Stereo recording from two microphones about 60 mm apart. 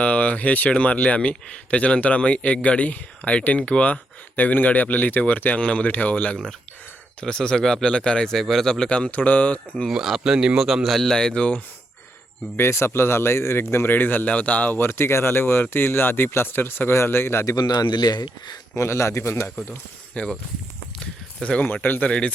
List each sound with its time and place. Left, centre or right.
0.0 s a man's voice: left
9.9 s speech: centre
12.5 s a man's voice: left
13.9 s speech: left
14.8 s speech: left
17.4 s a man's voice: left
18.7 s a man's voice: left
20.1 s speech: left
21.6 s speech: left